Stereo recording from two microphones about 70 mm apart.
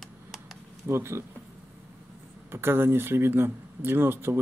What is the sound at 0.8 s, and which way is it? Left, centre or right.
Speech, right.